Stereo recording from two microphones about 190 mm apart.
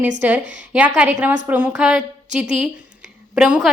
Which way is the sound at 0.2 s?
5° right (ahead or behind).